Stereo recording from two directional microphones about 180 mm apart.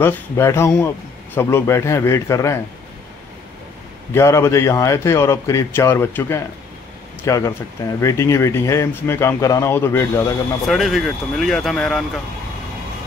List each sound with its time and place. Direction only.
0.0 s speech: 15° left (ahead or behind)
4.1 s speech: 15° left (ahead or behind)
10.7 s speech: centre (ahead or behind)